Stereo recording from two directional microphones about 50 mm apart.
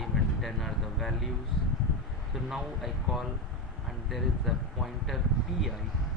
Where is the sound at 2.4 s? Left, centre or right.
Centre.